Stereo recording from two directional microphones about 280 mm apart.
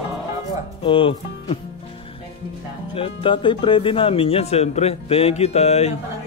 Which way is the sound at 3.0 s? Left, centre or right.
Centre.